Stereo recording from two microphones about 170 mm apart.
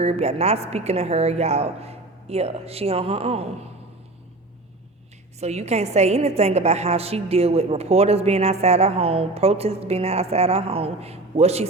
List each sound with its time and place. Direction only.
0.0 s a woman's voice: 40° right (ahead or behind)
5.4 s a woman's voice: 40° right (ahead or behind)